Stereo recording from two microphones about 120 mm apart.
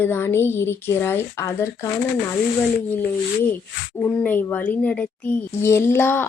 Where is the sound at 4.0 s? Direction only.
20° left (ahead or behind).